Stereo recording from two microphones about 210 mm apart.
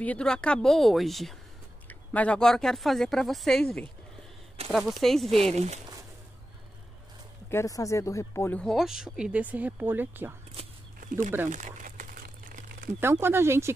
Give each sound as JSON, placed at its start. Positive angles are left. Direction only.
{"t": 0.0, "sound": "speech", "side_deg": 5}
{"t": 5.5, "sound": "speech", "side_deg": -30}
{"t": 7.5, "sound": "speech", "side_deg": 15}
{"t": 11.0, "sound": "speech", "side_deg": -40}
{"t": 11.4, "sound": "crumpling", "side_deg": -35}
{"t": 13.0, "sound": "speech", "side_deg": -10}